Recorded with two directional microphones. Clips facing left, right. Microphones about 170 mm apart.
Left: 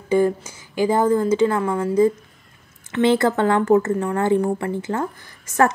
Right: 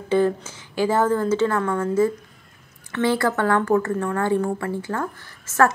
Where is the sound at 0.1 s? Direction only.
10° left (ahead or behind).